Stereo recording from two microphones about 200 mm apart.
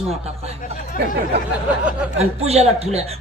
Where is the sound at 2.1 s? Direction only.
30° right (ahead or behind).